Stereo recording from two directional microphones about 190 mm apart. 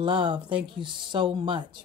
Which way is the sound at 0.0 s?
25° right (ahead or behind).